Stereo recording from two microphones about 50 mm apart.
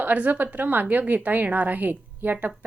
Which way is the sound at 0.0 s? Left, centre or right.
Right.